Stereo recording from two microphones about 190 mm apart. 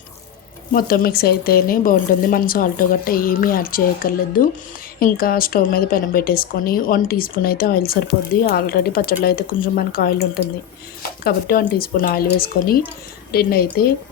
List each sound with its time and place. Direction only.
0.7 s speech: 50° left (ahead or behind)
11.2 s speech: 50° left (ahead or behind)